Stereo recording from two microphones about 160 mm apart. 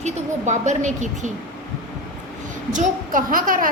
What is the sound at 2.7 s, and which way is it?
Speech, 55° right (ahead or behind).